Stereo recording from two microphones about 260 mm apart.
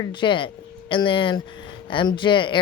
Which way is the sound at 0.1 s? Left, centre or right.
Centre.